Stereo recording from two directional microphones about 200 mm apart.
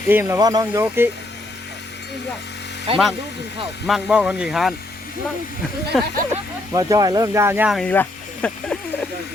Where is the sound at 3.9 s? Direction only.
Centre (ahead or behind).